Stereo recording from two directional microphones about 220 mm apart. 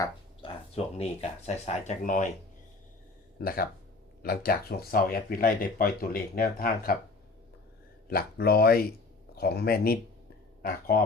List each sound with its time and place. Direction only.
0.0 s speech: 25° left (ahead or behind)
3.4 s speech: 40° left (ahead or behind)
8.1 s speech: 45° left (ahead or behind)